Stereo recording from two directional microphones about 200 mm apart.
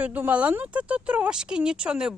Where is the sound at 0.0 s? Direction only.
10° right (ahead or behind).